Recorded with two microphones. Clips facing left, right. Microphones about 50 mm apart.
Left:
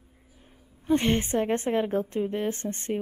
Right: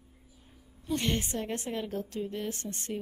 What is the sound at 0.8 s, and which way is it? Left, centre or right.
Speech, left.